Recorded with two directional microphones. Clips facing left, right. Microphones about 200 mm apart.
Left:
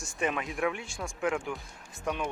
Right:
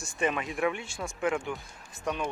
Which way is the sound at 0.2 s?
Centre (ahead or behind).